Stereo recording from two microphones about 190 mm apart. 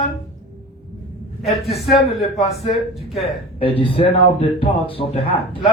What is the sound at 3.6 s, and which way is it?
A man's voice, 30° left (ahead or behind).